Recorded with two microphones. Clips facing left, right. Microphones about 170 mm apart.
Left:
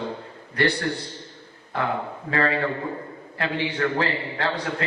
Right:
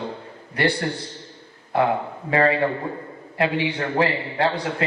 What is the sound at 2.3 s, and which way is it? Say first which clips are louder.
A man's voice: right 4 dB; 20° right (ahead or behind).